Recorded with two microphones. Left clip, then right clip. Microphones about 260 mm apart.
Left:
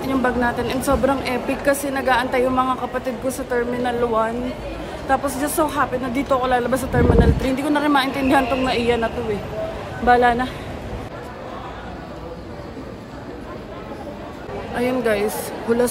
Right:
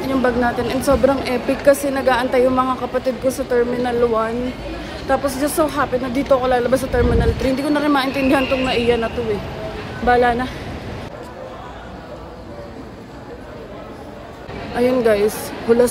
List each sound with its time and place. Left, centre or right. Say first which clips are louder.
0.0 s speech: right 2 dB; centre
14.8 s speech: right 5 dB; centre